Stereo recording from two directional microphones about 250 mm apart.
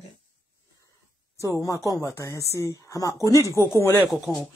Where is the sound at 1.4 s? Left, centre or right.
Centre.